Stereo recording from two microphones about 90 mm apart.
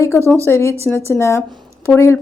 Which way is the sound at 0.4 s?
30° left (ahead or behind).